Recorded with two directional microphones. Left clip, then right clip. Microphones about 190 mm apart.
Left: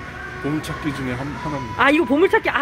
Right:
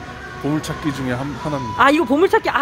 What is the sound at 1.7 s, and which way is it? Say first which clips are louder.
Speech: right 2 dB; 5° right (ahead or behind).